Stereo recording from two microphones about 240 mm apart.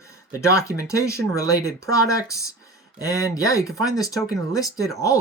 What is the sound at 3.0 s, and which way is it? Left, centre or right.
Speech, centre.